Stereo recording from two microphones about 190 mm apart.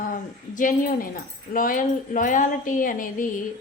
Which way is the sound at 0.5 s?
45° left (ahead or behind).